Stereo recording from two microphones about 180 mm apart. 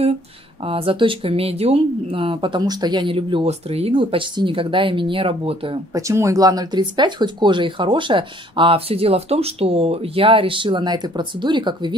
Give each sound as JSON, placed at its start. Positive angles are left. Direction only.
{"t": 0.6, "sound": "speech", "side_deg": -30}
{"t": 5.9, "sound": "speech", "side_deg": -15}